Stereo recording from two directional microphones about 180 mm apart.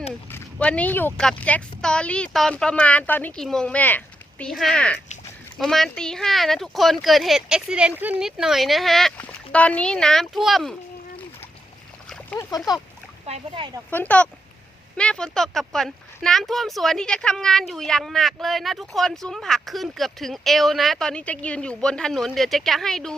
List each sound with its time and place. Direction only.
0.3 s speech: 10° left (ahead or behind)
12.0 s a sound: 5° left (ahead or behind)
12.4 s speech: 20° left (ahead or behind)
13.2 s speech: 35° right (ahead or behind)
13.9 s speech: 10° left (ahead or behind)